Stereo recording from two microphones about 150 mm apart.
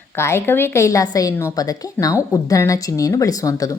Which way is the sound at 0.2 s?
15° left (ahead or behind).